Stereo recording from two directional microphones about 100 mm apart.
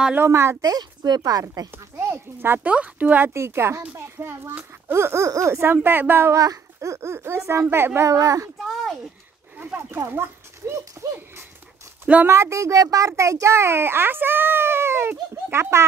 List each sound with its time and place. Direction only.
0.2 s a child's voice: 25° right (ahead or behind)
3.3 s a child's voice: 25° right (ahead or behind)
9.6 s a child's voice: 20° right (ahead or behind)
12.3 s a child's voice: 30° right (ahead or behind)